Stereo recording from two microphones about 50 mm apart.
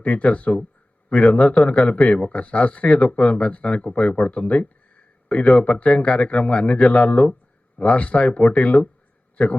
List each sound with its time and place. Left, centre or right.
0.0 s a man's voice: left